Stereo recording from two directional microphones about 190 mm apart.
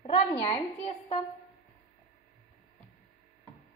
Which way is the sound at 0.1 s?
30° left (ahead or behind).